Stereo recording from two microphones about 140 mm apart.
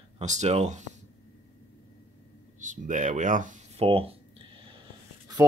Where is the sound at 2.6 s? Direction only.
65° right (ahead or behind).